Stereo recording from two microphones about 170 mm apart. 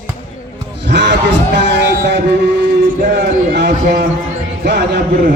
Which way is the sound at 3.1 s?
80° right.